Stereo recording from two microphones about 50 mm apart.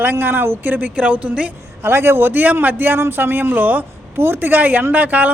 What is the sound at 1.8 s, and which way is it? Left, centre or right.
A man's voice, right.